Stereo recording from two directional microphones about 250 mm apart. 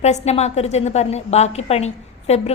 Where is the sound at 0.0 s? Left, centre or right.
Left.